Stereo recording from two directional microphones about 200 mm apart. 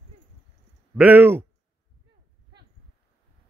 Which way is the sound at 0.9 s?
10° right (ahead or behind).